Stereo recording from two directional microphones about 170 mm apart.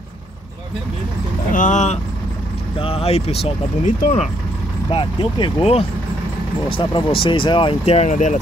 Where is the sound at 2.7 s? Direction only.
35° left (ahead or behind).